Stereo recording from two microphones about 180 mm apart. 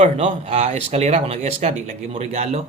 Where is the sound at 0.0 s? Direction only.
35° right (ahead or behind).